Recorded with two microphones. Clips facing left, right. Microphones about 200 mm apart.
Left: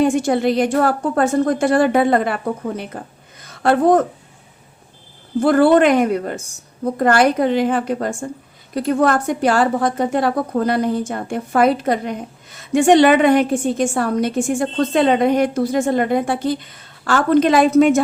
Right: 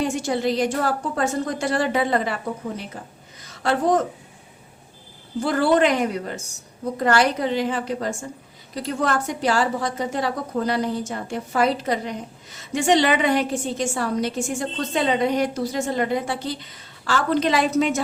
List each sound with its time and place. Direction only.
0.0 s a woman's voice: 55° left (ahead or behind)
3.4 s a sound: 55° left (ahead or behind)
5.4 s a woman's voice: 55° left (ahead or behind)